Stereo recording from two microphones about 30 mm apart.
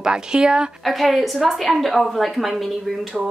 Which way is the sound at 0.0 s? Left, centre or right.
Right.